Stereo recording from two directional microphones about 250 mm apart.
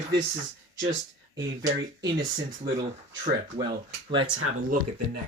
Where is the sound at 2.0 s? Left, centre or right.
Right.